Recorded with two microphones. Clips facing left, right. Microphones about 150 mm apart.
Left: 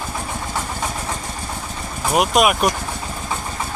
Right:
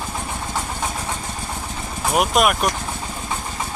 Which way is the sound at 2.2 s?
5° left (ahead or behind).